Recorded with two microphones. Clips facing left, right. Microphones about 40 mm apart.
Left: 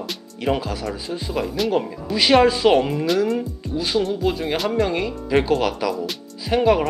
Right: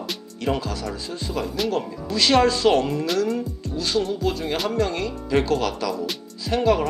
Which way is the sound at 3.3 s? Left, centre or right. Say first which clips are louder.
Left 3 dB; centre.